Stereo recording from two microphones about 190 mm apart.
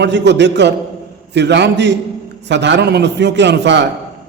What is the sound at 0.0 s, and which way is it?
A man's voice, 65° right (ahead or behind).